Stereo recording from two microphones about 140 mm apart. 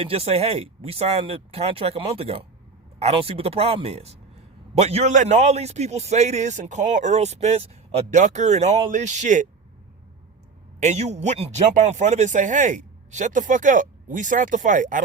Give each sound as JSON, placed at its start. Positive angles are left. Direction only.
{"t": 0.0, "sound": "a man's voice", "side_deg": -45}
{"t": 10.8, "sound": "speech", "side_deg": -55}